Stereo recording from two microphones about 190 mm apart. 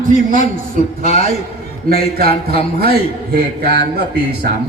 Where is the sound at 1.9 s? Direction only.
50° right (ahead or behind).